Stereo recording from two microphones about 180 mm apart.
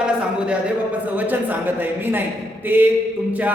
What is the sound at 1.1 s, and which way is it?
A man's voice, 10° right (ahead or behind).